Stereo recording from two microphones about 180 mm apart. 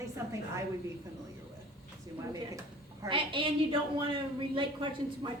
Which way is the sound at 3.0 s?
30° right (ahead or behind).